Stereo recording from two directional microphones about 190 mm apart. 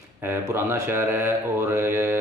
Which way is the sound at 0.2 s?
10° right (ahead or behind).